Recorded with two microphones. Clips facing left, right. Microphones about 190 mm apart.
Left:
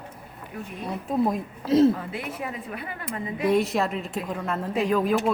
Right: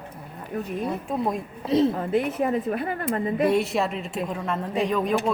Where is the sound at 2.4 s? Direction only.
45° right (ahead or behind).